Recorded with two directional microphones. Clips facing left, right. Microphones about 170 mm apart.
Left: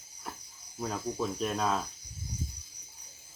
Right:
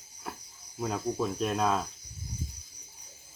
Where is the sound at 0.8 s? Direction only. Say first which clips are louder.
Right 3 dB; 5° right (ahead or behind).